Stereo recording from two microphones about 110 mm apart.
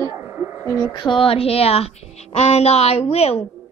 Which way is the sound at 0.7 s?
40° left (ahead or behind).